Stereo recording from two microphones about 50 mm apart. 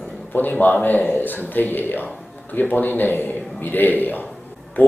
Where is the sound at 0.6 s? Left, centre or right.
Left.